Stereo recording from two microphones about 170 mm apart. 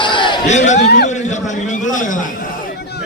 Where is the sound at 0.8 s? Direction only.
70° left (ahead or behind).